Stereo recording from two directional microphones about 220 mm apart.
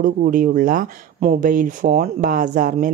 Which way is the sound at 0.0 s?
35° right (ahead or behind).